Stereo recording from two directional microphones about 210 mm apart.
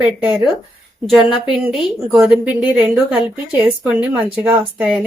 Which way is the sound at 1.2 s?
25° left (ahead or behind).